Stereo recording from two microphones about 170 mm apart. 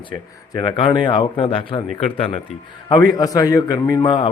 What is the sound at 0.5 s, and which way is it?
A man's voice, 30° left (ahead or behind).